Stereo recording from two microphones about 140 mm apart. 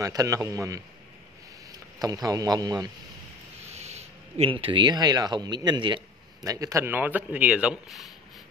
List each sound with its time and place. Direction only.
0.0 s speech: 25° right (ahead or behind)
3.6 s speech: 50° right (ahead or behind); by 8.1 s 5° right (ahead or behind)